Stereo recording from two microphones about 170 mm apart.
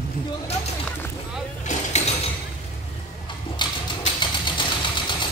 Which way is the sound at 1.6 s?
40° left (ahead or behind).